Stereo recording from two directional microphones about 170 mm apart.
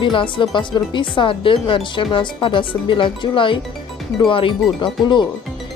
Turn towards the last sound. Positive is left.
turn(degrees=30)  # may be behind; listen again after turning